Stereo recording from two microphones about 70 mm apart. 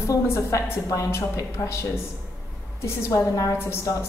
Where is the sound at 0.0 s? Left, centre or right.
Left.